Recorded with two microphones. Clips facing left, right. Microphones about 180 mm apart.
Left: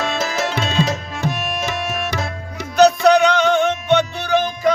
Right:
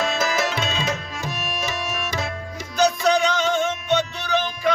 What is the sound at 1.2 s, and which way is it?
Tabla, 55° left (ahead or behind).